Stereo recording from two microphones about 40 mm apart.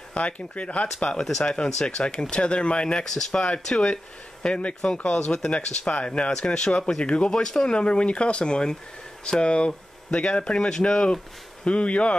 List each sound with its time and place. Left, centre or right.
0.1 s speech: left
1.4 s speech: left
3.1 s speech: centre
3.4 s speech: left
5.1 s speech: centre
5.5 s speech: left